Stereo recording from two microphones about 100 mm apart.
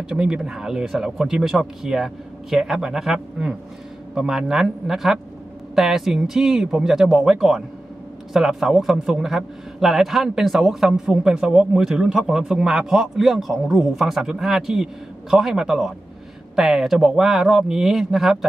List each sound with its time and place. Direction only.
0.1 s a man's voice: 10° right (ahead or behind)